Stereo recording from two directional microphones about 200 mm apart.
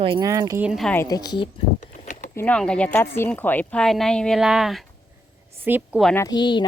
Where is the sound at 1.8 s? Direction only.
40° left (ahead or behind).